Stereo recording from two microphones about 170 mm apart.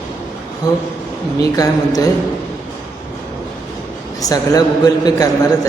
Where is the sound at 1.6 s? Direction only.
20° left (ahead or behind).